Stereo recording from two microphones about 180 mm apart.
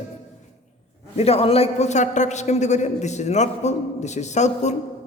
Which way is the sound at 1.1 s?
35° left (ahead or behind).